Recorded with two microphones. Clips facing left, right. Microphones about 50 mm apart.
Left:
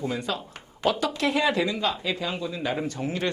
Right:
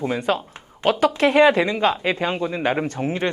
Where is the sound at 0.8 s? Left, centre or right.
Right.